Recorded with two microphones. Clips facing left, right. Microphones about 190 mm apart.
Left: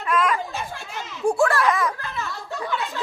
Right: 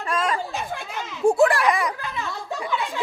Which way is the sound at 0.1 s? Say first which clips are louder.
Left 3 dB; 30° right (ahead or behind).